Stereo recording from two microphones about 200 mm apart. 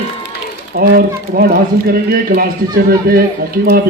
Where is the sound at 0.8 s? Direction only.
50° right (ahead or behind).